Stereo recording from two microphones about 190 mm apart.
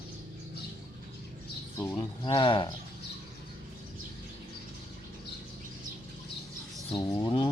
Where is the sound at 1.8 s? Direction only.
15° left (ahead or behind).